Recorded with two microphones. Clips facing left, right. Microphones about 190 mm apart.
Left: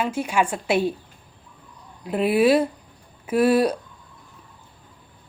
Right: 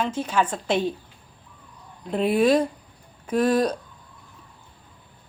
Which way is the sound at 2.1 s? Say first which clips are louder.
Left 1 dB; 5° left (ahead or behind).